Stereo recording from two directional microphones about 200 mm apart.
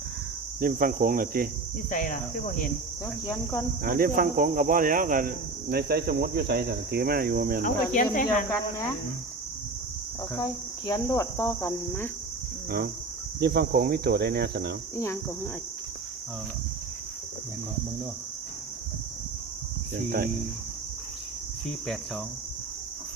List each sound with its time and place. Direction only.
0.6 s speech: 45° right (ahead or behind)
1.9 s speech: 40° left (ahead or behind)
3.2 s cricket: 15° left (ahead or behind)
3.8 s speech: 45° right (ahead or behind)
7.6 s speech: 40° left (ahead or behind)
10.3 s cricket: 20° left (ahead or behind)
13.4 s speech: 55° right (ahead or behind)
14.9 s cricket: 15° left (ahead or behind)
20.1 s speech: 45° right (ahead or behind)
21.7 s cricket: centre (ahead or behind)